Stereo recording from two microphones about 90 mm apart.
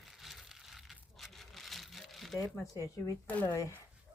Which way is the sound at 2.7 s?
40° left (ahead or behind).